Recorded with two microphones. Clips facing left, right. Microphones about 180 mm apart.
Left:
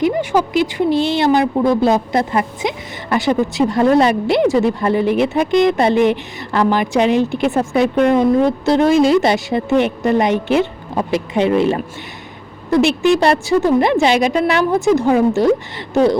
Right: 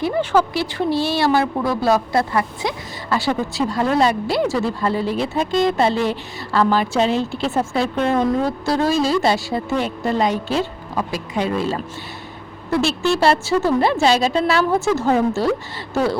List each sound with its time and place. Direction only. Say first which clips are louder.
0.0 s a woman's voice: left 2 dB; 15° left (ahead or behind)